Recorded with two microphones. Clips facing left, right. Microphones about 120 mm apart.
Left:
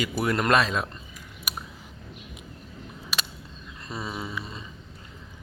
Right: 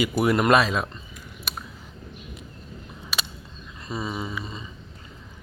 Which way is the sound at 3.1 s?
Centre (ahead or behind).